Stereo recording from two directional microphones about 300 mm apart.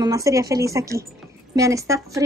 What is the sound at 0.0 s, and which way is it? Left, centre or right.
A woman's voice, centre.